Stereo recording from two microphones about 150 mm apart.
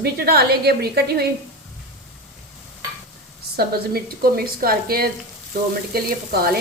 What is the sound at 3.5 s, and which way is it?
A woman's voice, 90° right.